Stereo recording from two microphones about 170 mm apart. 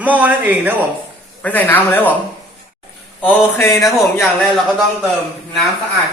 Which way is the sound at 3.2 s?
10° left (ahead or behind).